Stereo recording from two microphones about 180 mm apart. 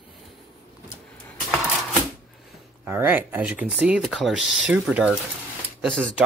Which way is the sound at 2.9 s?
10° right (ahead or behind).